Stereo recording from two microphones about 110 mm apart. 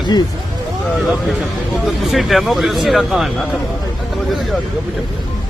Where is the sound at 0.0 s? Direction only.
40° left (ahead or behind).